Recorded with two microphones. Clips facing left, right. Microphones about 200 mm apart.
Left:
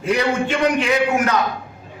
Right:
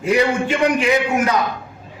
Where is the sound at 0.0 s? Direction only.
10° right (ahead or behind).